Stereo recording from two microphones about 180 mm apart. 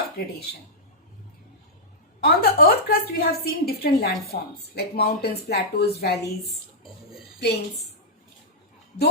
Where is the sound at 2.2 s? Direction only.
60° left (ahead or behind).